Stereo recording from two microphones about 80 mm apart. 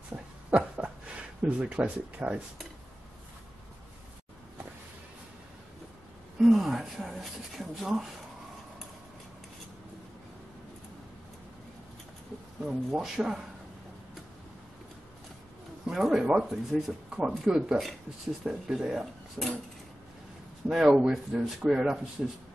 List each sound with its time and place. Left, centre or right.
0.1 s a sound: centre
1.4 s speech: centre
6.4 s speech: centre
12.6 s speech: centre
15.9 s speech: centre
20.6 s speech: centre